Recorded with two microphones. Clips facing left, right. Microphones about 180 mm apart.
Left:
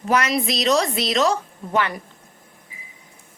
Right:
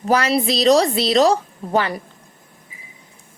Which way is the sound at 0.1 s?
30° right (ahead or behind).